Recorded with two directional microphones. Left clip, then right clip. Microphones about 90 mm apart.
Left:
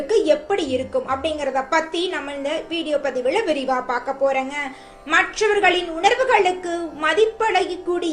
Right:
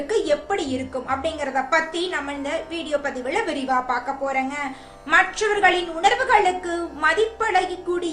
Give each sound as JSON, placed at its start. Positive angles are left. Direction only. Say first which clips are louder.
{"t": 0.1, "sound": "a sound", "louder": "left 4 dB", "side_deg": 20}
{"t": 1.2, "sound": "a woman's voice", "louder": "left 2 dB", "side_deg": 20}
{"t": 5.1, "sound": "a woman's voice", "louder": "left 1 dB", "side_deg": 0}